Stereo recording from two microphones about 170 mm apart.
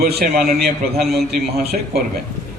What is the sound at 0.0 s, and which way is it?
A man's voice, 65° right (ahead or behind).